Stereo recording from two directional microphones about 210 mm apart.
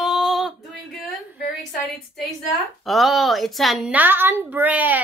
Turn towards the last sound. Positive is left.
turn(degrees=-10)  # may be behind; listen again after turning